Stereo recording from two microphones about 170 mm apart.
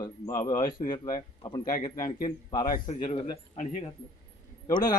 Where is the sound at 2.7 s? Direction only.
50° left (ahead or behind).